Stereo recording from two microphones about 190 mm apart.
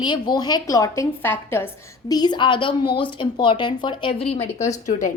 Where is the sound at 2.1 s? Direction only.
20° left (ahead or behind); by 5.1 s 40° left (ahead or behind).